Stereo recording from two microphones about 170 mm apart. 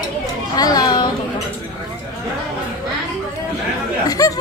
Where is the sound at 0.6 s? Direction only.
20° left (ahead or behind).